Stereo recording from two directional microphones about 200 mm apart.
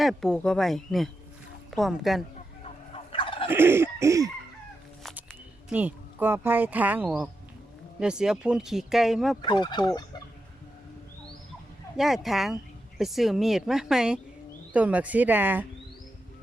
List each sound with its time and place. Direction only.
0.0 s speech: centre (ahead or behind)
2.9 s fowl: 25° left (ahead or behind)
3.5 s cough: 10° right (ahead or behind)
5.6 s speech: 5° right (ahead or behind)
9.4 s fowl: 20° left (ahead or behind)
11.9 s speech: centre (ahead or behind)